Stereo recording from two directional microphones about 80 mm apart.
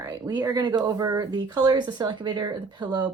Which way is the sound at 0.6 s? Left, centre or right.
Right.